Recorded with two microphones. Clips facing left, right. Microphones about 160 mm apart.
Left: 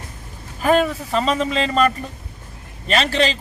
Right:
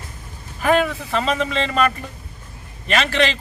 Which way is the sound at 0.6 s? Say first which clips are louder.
Left 1 dB; 35° left (ahead or behind).